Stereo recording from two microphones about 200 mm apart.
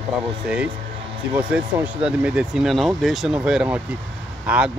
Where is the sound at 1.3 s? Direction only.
10° right (ahead or behind).